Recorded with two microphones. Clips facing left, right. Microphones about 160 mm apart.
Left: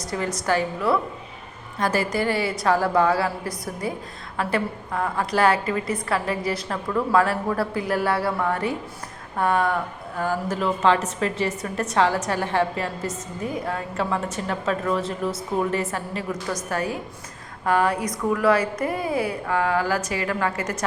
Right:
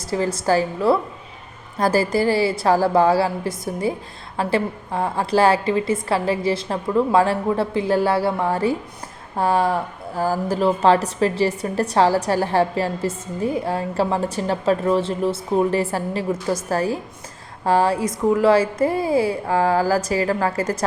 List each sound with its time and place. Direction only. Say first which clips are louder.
0.1 s a woman's voice: right 5 dB; 25° right (ahead or behind)